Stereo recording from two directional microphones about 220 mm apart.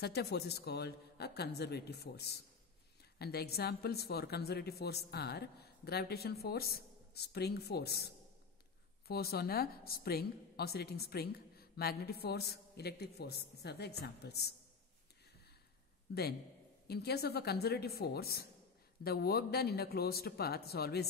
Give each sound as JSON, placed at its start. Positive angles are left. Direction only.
{"t": 0.0, "sound": "a woman's voice", "side_deg": 45}
{"t": 16.1, "sound": "a woman's voice", "side_deg": 50}